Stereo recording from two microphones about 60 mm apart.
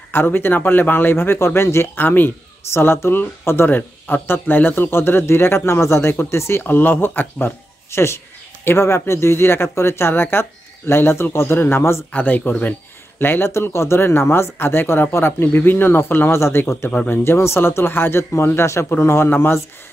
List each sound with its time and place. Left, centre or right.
0.1 s speech: left
2.0 s speech: left
2.7 s speech: left
6.6 s speech: left
12.1 s speech: left
13.5 s speech: left